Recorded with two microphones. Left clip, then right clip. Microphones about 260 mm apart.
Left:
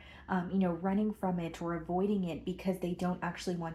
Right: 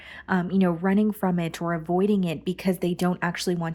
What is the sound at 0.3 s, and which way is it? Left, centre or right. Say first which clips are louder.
A woman's voice: right 9 dB; right.